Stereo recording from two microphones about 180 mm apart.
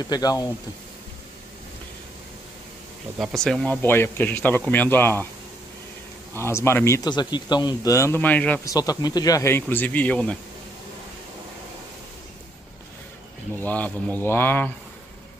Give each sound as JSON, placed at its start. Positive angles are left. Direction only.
{"t": 0.1, "sound": "speech", "side_deg": 20}
{"t": 3.2, "sound": "a man's voice", "side_deg": 0}
{"t": 6.3, "sound": "a man's voice", "side_deg": 15}
{"t": 8.6, "sound": "a man's voice", "side_deg": 20}
{"t": 13.6, "sound": "a man's voice", "side_deg": 10}